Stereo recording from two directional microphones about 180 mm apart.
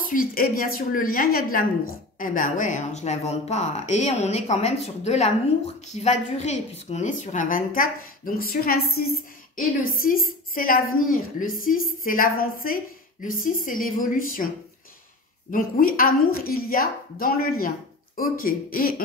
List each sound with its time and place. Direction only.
0.0 s a woman's voice: 50° left (ahead or behind)
15.5 s a woman's voice: 50° left (ahead or behind)